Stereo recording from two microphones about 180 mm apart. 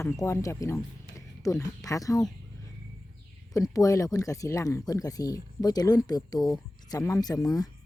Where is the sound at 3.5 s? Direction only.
20° left (ahead or behind).